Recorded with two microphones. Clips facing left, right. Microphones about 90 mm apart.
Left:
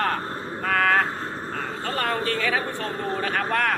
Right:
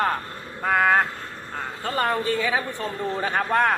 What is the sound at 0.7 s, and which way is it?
Speech, 15° right (ahead or behind).